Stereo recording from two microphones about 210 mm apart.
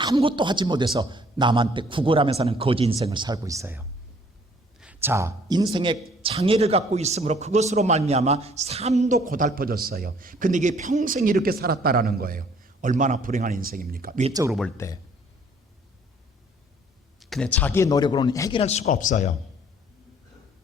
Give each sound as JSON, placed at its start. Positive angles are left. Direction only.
{"t": 0.0, "sound": "a man's voice", "side_deg": -20}
{"t": 14.3, "sound": "speech", "side_deg": -15}
{"t": 14.8, "sound": "a man's voice", "side_deg": 15}
{"t": 17.2, "sound": "a man's voice", "side_deg": 0}
{"t": 18.6, "sound": "speech", "side_deg": 30}